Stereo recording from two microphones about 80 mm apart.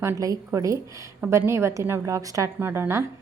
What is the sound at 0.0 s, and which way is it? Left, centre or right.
A woman's voice, right.